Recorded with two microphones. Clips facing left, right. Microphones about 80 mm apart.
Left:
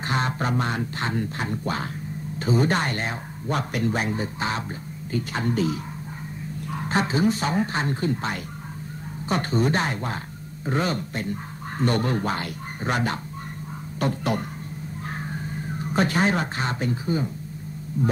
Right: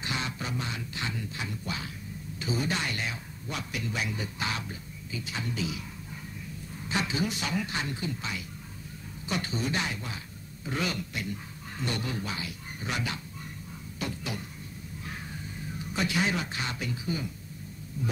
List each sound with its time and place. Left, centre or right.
0.0 s speech: left
5.1 s speech: left
6.9 s speech: left
15.0 s a sound: left
18.0 s speech: left